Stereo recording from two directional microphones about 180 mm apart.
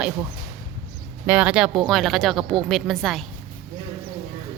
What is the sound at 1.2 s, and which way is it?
Speech, 5° right (ahead or behind).